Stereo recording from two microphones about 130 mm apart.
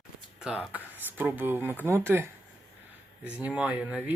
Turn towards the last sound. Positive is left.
turn(degrees=-10)  # may be behind; listen again after turning